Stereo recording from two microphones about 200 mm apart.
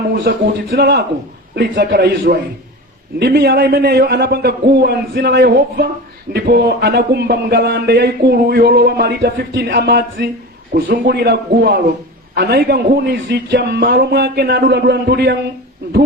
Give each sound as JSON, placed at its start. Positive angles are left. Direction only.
{"t": 0.1, "sound": "a man's voice", "side_deg": -50}